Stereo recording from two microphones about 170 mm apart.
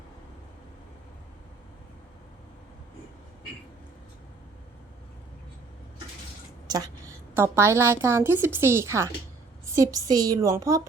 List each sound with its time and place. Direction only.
6.7 s a woman's voice: 20° right (ahead or behind)